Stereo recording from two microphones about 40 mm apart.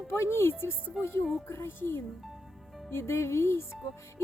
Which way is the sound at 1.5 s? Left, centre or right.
Left.